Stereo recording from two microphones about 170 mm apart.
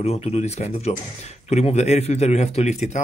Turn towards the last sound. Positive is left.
turn(degrees=40)  # may be behind; listen again after turning